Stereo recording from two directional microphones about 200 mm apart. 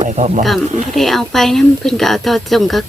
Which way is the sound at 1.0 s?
Centre (ahead or behind).